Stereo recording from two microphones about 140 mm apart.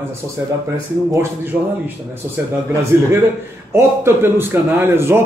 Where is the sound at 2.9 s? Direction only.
15° right (ahead or behind).